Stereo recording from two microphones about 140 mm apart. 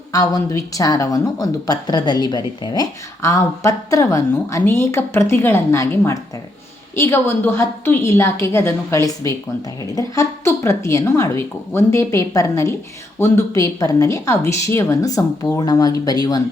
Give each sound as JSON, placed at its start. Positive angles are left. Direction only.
{"t": 0.1, "sound": "a woman's voice", "side_deg": 25}